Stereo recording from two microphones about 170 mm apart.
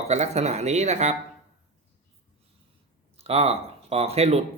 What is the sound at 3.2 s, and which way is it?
Speech, 35° right (ahead or behind).